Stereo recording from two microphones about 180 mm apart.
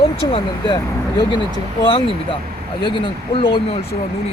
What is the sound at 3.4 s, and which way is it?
Speech, 30° left (ahead or behind).